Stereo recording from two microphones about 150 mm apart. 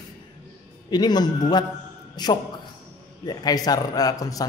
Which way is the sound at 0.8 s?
25° left (ahead or behind).